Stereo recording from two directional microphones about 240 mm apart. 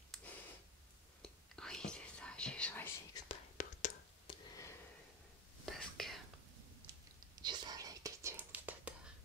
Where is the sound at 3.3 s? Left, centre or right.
Left.